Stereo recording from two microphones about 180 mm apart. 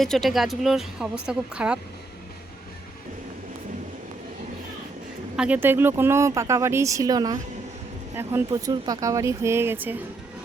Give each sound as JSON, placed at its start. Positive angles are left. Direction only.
{"t": 0.0, "sound": "a woman's voice", "side_deg": 0}
{"t": 5.4, "sound": "speech", "side_deg": -10}